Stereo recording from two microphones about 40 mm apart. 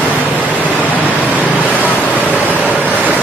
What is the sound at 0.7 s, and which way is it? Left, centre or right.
Pink noise, left.